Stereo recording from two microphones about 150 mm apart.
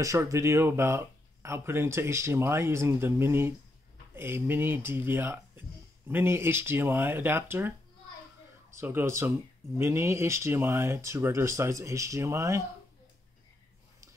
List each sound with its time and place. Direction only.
0.0 s speech: 20° right (ahead or behind)
8.7 s speech: 15° right (ahead or behind)